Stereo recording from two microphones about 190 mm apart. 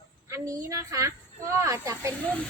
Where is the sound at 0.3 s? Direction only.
15° right (ahead or behind).